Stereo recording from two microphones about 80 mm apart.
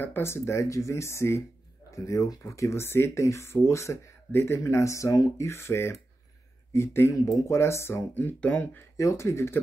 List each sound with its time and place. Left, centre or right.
0.0 s speech: left
7.2 s speech: left
7.5 s speech: left
8.1 s speech: left
8.9 s speech: left